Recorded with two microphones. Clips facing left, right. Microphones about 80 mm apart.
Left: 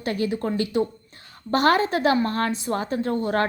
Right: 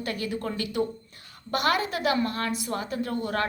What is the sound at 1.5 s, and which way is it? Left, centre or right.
A woman's voice, left.